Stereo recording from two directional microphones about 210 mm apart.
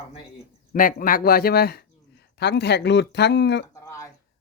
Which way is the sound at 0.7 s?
40° left (ahead or behind).